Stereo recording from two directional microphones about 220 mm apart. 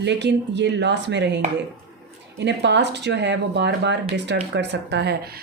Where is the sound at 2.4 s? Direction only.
50° right (ahead or behind).